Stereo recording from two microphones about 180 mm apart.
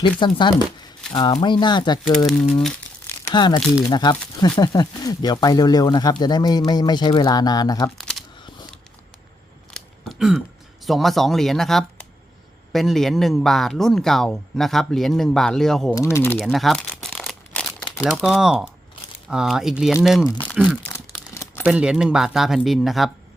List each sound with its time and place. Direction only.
0.2 s speech: 25° left (ahead or behind)
2.1 s speech: 5° left (ahead or behind)
3.3 s speech: 25° left (ahead or behind)
10.1 s throat clearing: 5° right (ahead or behind)
10.8 s speech: centre (ahead or behind)
16.0 s speech: 15° left (ahead or behind)
16.4 s crumpling: centre (ahead or behind)
17.7 s crumpling: 15° left (ahead or behind)
18.0 s speech: 5° right (ahead or behind)
20.8 s crumpling: 10° left (ahead or behind)
21.7 s speech: 5° right (ahead or behind)